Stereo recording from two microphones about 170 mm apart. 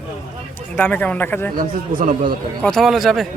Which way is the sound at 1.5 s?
55° right (ahead or behind).